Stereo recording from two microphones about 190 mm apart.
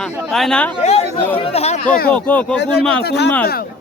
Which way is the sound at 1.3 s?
30° left (ahead or behind).